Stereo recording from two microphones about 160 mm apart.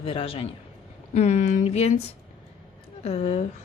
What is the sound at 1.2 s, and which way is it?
Speech, 45° left (ahead or behind).